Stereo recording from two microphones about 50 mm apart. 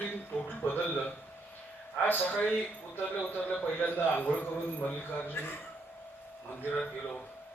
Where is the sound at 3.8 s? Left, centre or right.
Left.